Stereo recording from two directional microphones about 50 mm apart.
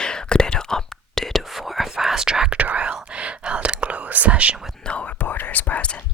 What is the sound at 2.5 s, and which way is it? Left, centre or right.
Whispering, right.